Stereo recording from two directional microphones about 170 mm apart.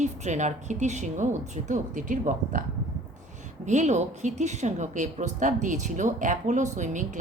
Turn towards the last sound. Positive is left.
turn(degrees=-45)  # may be behind; listen again after turning